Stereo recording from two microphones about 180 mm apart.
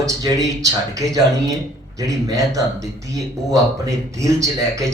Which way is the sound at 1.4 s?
20° right (ahead or behind).